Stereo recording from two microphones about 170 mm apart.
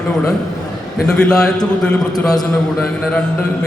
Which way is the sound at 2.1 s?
20° left (ahead or behind).